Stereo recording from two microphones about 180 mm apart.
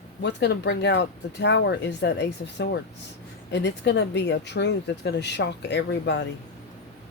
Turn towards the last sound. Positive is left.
turn(degrees=75)  # may be behind; listen again after turning